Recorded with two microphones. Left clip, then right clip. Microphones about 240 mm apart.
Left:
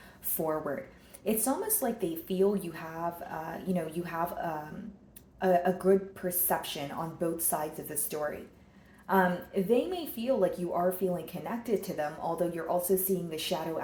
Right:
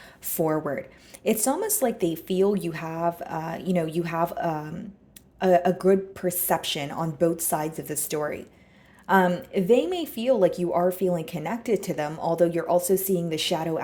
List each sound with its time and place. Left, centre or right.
0.3 s a woman's voice: right